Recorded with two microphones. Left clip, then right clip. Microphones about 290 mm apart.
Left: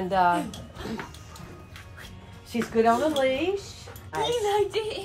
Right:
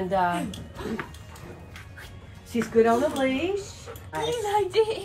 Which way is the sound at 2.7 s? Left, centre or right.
Left.